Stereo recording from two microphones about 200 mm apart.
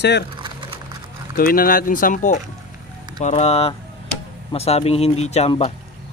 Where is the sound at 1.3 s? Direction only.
45° left (ahead or behind).